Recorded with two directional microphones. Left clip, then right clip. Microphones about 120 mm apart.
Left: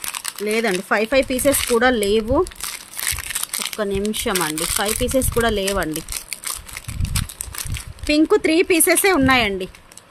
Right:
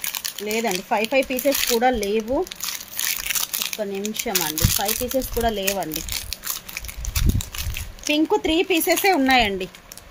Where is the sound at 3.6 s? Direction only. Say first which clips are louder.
Even; 30° left (ahead or behind).